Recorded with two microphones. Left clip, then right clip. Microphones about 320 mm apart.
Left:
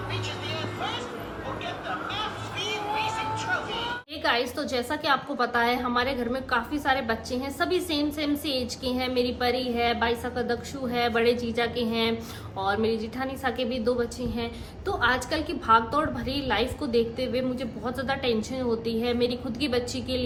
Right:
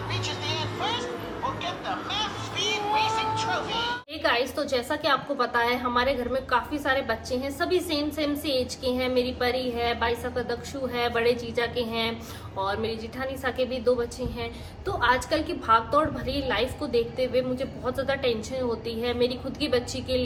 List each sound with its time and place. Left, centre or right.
0.1 s music: centre
1.5 s a woman's voice: centre